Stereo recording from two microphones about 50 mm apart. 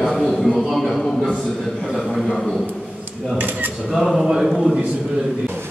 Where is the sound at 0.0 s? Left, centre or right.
Centre.